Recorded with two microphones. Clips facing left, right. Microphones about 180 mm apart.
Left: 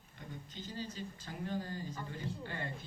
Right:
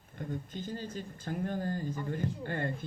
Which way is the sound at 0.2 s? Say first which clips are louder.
Right 9 dB; 50° right (ahead or behind).